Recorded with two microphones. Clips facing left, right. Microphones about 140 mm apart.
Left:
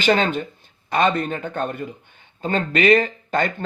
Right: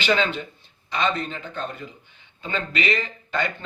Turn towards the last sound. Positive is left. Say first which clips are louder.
# left 5 dB
turn(degrees=45)  # may be behind; listen again after turning